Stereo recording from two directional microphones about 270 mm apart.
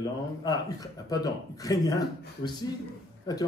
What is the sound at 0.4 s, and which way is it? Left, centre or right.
Speech, centre.